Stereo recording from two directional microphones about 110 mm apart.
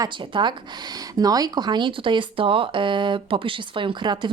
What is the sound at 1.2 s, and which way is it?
Speech, 35° right (ahead or behind).